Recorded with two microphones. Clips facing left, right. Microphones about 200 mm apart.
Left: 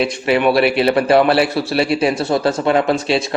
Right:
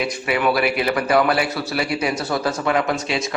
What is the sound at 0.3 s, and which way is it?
A man's voice, 30° left (ahead or behind).